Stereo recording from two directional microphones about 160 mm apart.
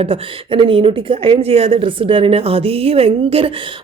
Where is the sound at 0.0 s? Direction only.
35° right (ahead or behind).